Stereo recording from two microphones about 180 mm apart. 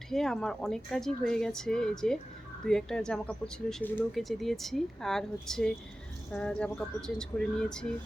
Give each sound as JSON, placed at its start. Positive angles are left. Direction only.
{"t": 0.1, "sound": "speech", "side_deg": 0}